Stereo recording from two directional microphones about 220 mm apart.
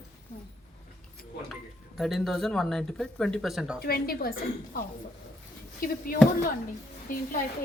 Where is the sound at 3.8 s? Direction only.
45° left (ahead or behind).